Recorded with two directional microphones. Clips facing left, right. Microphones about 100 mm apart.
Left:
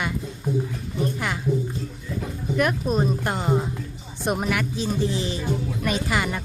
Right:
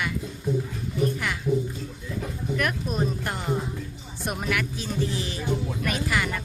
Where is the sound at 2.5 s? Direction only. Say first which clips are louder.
Left 6 dB; 25° left (ahead or behind).